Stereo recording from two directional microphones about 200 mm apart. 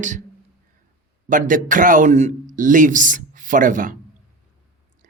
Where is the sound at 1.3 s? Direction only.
40° right (ahead or behind).